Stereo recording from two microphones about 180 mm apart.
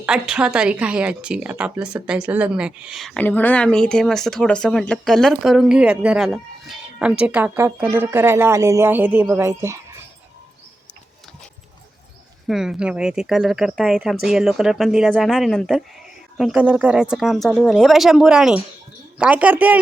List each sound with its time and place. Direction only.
0.0 s speech: 5° right (ahead or behind)
3.2 s speech: 10° left (ahead or behind); by 9.8 s 15° right (ahead or behind)
12.5 s a woman's voice: centre (ahead or behind)